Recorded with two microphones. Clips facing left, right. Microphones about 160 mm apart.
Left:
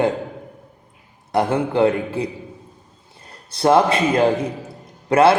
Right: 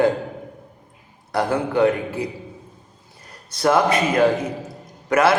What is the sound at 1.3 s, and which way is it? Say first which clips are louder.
A man's voice: left 2 dB; 25° left (ahead or behind).